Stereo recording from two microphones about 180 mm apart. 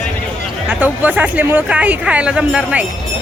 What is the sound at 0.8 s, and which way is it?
Speech, 10° right (ahead or behind).